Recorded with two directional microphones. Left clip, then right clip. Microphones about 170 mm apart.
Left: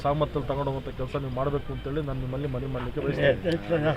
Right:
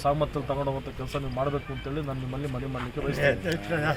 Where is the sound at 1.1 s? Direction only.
5° left (ahead or behind).